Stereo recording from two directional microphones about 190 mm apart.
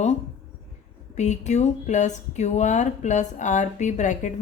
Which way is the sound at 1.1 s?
40° left (ahead or behind).